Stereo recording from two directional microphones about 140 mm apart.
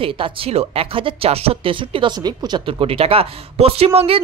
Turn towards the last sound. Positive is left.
turn(degrees=-45)  # may be behind; listen again after turning